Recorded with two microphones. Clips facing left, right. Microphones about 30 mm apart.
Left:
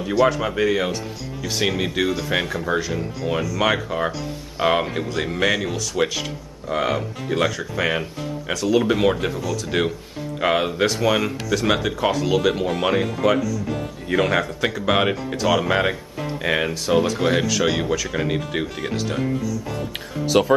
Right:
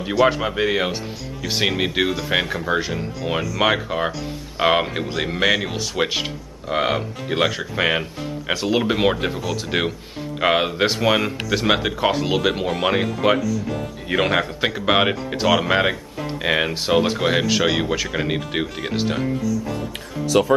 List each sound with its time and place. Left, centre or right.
0.4 s speech: right
13.4 s speech: centre
14.0 s speech: right
17.2 s speech: centre
19.2 s speech: centre